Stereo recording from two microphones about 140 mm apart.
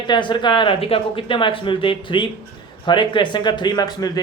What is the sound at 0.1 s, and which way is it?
Speech, 35° left (ahead or behind).